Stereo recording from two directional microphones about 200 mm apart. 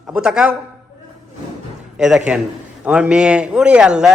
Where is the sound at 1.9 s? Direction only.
5° right (ahead or behind).